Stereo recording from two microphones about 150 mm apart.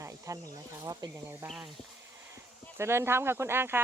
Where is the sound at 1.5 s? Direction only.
Centre (ahead or behind).